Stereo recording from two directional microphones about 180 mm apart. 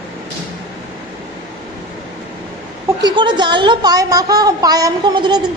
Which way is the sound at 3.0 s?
25° right (ahead or behind).